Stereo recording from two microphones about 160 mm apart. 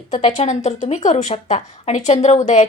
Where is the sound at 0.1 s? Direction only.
40° left (ahead or behind).